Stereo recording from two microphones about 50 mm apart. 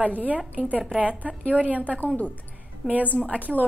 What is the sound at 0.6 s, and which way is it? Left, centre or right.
A woman's voice, right.